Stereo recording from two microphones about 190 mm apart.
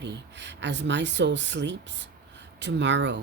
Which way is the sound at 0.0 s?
70° right (ahead or behind).